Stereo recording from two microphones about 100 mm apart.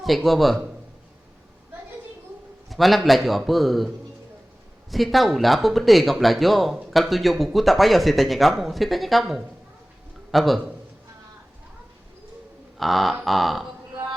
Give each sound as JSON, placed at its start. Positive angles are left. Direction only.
{"t": 0.0, "sound": "speech", "side_deg": 0}
{"t": 2.6, "sound": "speech", "side_deg": 0}
{"t": 12.7, "sound": "speech", "side_deg": 0}